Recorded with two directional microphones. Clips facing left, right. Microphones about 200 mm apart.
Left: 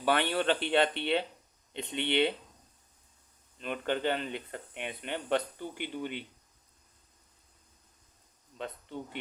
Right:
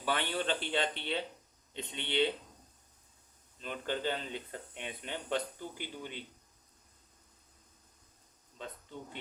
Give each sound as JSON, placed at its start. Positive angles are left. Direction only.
{"t": 0.0, "sound": "speech", "side_deg": 65}
{"t": 3.6, "sound": "speech", "side_deg": 65}
{"t": 8.6, "sound": "speech", "side_deg": 70}